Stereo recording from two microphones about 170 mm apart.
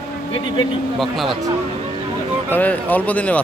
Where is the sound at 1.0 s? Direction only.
Centre (ahead or behind).